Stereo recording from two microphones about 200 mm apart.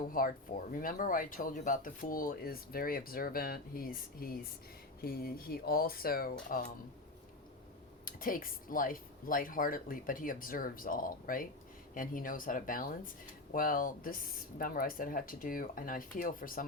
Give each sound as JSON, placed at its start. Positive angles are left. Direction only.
{"t": 0.1, "sound": "speech", "side_deg": 45}
{"t": 8.0, "sound": "speech", "side_deg": 45}